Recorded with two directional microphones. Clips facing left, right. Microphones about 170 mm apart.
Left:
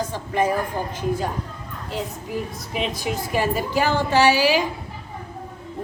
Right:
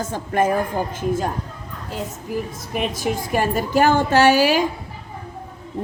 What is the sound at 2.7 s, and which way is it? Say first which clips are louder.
A woman's voice: right 3 dB; 50° right (ahead or behind).